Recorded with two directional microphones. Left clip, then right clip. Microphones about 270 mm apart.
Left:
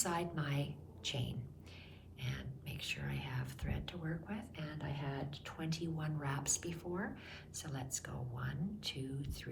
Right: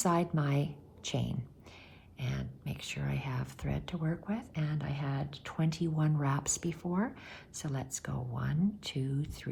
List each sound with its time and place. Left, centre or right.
0.0 s speech: centre